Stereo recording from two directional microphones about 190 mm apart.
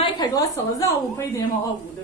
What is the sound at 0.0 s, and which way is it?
A woman's voice, 20° left (ahead or behind).